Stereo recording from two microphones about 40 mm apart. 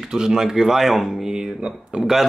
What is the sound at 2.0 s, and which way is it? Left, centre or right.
Speech, centre.